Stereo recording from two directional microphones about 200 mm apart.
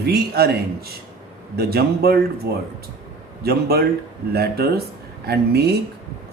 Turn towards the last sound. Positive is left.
turn(degrees=-55)  # may be behind; listen again after turning